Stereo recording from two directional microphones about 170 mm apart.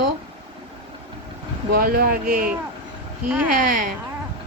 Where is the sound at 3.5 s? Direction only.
50° right (ahead or behind).